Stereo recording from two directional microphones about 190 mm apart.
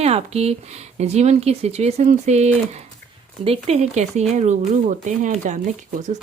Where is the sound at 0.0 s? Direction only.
35° right (ahead or behind).